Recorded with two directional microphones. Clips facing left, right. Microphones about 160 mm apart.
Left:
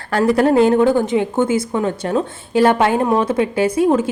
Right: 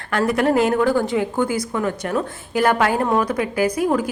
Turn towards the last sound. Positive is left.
turn(degrees=25)  # may be behind; listen again after turning